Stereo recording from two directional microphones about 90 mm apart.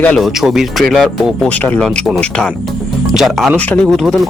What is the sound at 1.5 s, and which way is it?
Speech, 15° left (ahead or behind).